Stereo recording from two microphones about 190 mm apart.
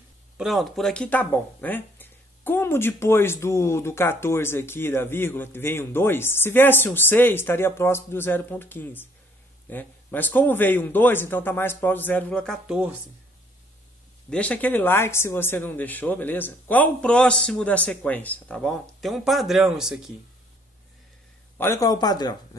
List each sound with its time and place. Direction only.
0.4 s speech: centre (ahead or behind)
14.3 s speech: 5° left (ahead or behind)
21.5 s speech: 15° left (ahead or behind)